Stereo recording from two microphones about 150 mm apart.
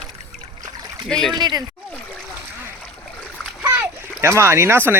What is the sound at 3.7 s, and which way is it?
Splash, 15° right (ahead or behind).